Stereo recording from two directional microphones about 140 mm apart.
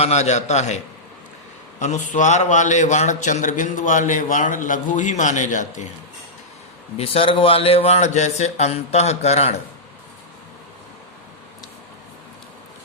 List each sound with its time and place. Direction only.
0.0 s speech: 50° left (ahead or behind)
1.8 s a man's voice: 60° left (ahead or behind)
6.9 s speech: 45° left (ahead or behind)